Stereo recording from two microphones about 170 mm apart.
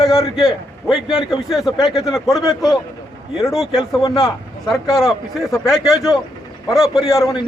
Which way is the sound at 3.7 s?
20° left (ahead or behind).